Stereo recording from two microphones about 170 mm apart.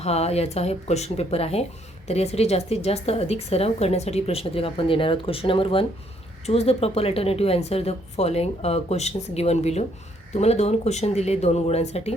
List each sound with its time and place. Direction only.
0.0 s speech: 40° left (ahead or behind)